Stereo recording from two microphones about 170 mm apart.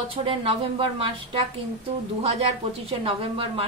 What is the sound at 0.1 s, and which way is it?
A woman's voice, 30° right (ahead or behind).